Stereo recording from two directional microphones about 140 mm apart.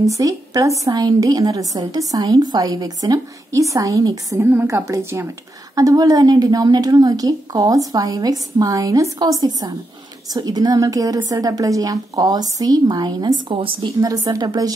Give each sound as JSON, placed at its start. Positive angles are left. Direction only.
{"t": 0.0, "sound": "a woman's voice", "side_deg": -25}
{"t": 4.4, "sound": "a woman's voice", "side_deg": -15}
{"t": 13.8, "sound": "a woman's voice", "side_deg": -25}